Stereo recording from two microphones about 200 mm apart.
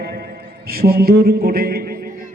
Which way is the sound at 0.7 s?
50° right (ahead or behind).